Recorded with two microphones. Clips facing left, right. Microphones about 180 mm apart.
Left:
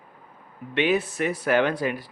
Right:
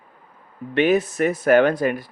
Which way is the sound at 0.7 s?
45° right (ahead or behind).